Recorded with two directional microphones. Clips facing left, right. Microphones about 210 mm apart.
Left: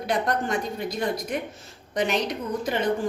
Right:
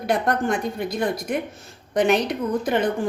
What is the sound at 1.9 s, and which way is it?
Speech, 55° right (ahead or behind).